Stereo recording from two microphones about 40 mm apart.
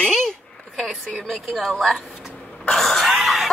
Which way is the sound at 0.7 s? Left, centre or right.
Centre.